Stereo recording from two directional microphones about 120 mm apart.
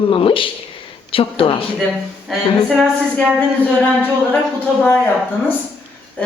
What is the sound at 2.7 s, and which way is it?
Speech, 5° left (ahead or behind).